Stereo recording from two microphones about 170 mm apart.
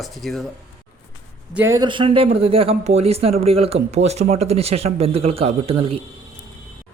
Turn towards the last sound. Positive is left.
turn(degrees=-35)  # may be behind; listen again after turning